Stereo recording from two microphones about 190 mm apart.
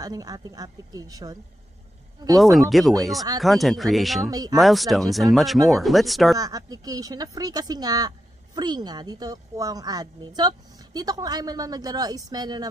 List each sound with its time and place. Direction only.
0.0 s a woman's voice: 20° right (ahead or behind)
2.4 s speech: centre (ahead or behind)
4.3 s a woman's voice: 20° right (ahead or behind)
4.6 s speech: centre (ahead or behind)
6.3 s a woman's voice: 20° right (ahead or behind)